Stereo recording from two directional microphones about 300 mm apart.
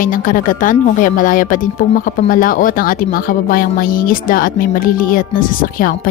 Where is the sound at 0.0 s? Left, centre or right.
Left.